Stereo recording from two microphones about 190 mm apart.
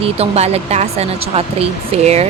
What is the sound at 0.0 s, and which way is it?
Speech, 35° right (ahead or behind).